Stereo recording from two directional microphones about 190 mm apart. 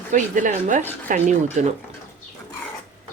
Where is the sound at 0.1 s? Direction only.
45° right (ahead or behind).